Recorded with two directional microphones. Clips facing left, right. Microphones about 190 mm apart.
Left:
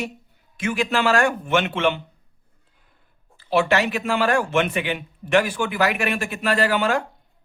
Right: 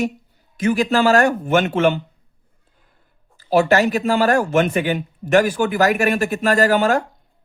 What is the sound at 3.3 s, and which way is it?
Speech, 40° right (ahead or behind).